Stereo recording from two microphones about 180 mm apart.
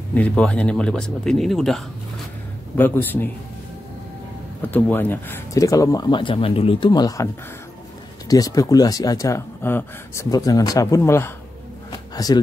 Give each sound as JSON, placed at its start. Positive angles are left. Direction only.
{"t": 0.1, "sound": "speech", "side_deg": 5}
{"t": 2.8, "sound": "a man's voice", "side_deg": 10}
{"t": 4.6, "sound": "speech", "side_deg": 10}
{"t": 8.3, "sound": "speech", "side_deg": 20}